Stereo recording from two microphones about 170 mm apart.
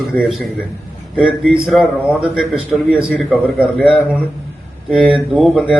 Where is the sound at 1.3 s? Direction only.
5° right (ahead or behind).